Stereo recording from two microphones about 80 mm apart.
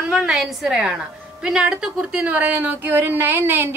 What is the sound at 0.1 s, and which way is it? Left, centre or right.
A woman's voice, centre.